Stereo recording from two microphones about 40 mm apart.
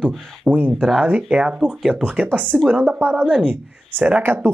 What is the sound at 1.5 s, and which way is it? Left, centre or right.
Speech, centre.